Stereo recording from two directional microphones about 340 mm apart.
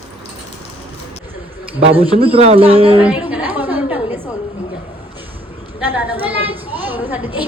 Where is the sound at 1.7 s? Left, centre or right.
Centre.